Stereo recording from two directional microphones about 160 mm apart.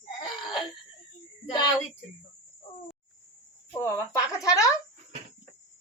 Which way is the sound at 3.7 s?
15° left (ahead or behind).